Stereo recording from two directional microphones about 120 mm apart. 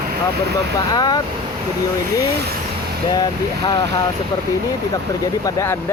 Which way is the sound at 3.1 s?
35° left (ahead or behind).